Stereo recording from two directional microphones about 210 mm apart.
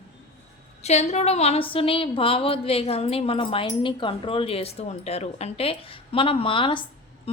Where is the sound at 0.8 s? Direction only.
30° left (ahead or behind).